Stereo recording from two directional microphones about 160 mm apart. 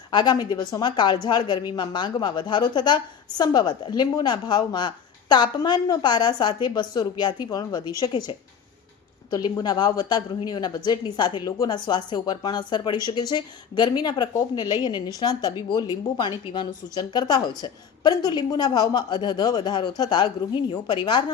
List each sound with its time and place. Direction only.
0.1 s a woman's voice: 25° left (ahead or behind)
9.3 s a woman's voice: 25° left (ahead or behind)